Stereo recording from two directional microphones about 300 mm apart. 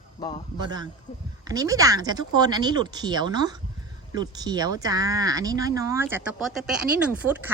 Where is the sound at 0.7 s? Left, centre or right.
Centre.